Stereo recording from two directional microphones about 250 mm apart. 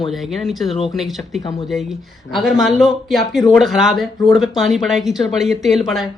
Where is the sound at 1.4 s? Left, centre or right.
Centre.